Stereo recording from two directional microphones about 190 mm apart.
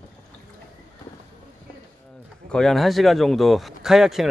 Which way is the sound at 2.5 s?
5° left (ahead or behind).